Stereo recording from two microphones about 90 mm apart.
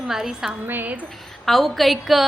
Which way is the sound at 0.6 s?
20° right (ahead or behind).